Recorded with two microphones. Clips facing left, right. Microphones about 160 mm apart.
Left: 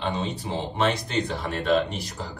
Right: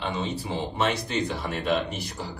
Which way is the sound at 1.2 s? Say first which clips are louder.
Left 1 dB; centre (ahead or behind).